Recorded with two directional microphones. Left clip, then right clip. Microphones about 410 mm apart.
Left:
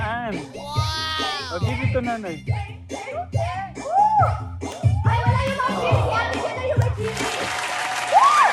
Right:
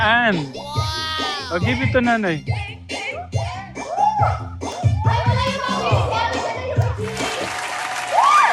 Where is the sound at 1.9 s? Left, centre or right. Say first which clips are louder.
Right 8 dB; right.